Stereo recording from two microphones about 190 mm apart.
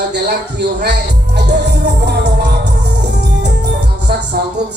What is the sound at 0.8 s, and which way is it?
Music, 60° right (ahead or behind).